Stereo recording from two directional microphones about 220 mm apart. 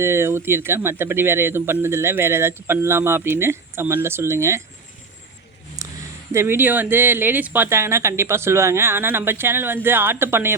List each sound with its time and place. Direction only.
0.0 s speech: 10° right (ahead or behind)
5.8 s a sound: 15° right (ahead or behind)
6.3 s speech: 10° right (ahead or behind)